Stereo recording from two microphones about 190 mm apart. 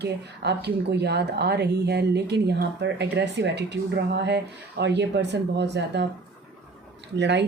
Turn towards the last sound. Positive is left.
turn(degrees=-65)  # may be behind; listen again after turning